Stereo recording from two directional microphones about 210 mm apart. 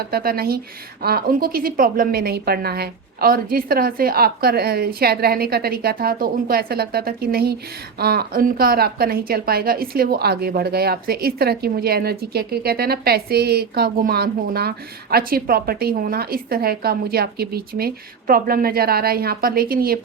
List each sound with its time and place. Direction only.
0.0 s a woman's voice: 45° right (ahead or behind)